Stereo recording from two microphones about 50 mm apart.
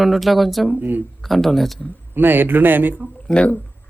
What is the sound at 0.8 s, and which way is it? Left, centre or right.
Speech, right.